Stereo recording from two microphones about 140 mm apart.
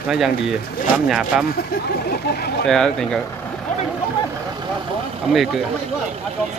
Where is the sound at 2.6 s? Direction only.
5° left (ahead or behind).